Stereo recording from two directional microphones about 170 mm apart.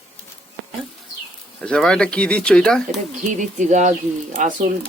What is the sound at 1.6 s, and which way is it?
Speech, 5° left (ahead or behind).